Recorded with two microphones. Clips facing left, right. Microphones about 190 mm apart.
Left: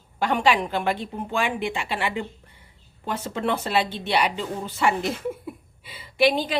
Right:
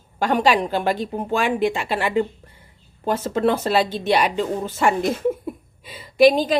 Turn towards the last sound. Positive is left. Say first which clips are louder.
# right 7 dB
turn(degrees=-40)  # may be behind; listen again after turning